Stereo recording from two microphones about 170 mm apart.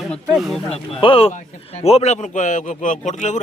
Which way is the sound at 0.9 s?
30° left (ahead or behind).